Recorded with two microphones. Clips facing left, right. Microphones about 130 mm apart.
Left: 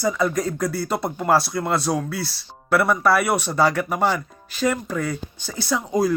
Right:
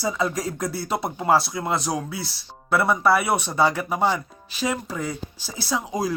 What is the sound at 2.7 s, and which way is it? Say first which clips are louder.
Speech: left 1 dB; 20° right (ahead or behind).